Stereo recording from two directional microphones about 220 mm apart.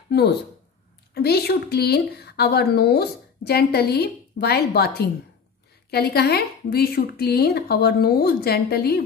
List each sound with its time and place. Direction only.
0.1 s a woman's voice: 50° left (ahead or behind)